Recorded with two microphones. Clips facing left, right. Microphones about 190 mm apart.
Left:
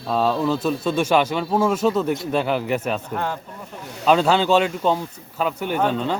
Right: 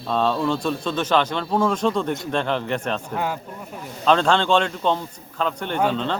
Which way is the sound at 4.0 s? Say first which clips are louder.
Left 1 dB; 10° left (ahead or behind).